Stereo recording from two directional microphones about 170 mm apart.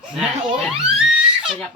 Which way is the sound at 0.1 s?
5° right (ahead or behind).